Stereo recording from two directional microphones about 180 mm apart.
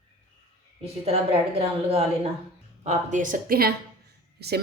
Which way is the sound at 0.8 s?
35° right (ahead or behind).